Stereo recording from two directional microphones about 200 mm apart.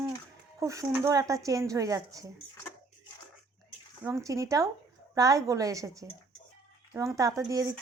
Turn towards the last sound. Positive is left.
turn(degrees=-15)  # may be behind; listen again after turning